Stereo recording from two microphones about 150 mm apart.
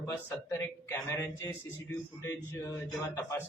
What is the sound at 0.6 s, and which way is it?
A man's voice, 20° left (ahead or behind).